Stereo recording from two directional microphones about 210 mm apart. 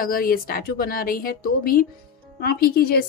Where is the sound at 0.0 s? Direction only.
45° left (ahead or behind).